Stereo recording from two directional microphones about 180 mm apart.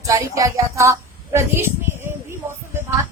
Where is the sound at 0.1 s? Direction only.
20° right (ahead or behind).